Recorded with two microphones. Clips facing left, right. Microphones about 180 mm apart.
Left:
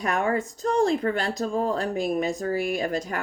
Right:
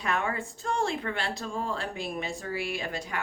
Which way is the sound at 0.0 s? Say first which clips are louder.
Left 6 dB; 45° left (ahead or behind).